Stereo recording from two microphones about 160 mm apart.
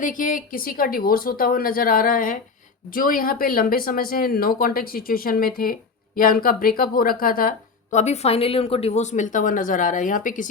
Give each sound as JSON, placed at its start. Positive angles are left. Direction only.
{"t": 0.0, "sound": "a woman's voice", "side_deg": 55}